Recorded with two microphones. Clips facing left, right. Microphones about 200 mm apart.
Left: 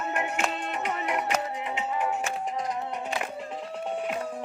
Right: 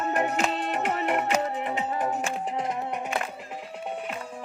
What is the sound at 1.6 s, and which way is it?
Music, 35° right (ahead or behind).